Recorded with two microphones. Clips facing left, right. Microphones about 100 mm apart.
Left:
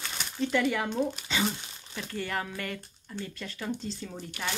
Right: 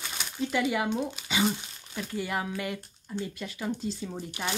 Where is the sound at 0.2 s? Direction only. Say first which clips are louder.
Left 1 dB; 10° right (ahead or behind).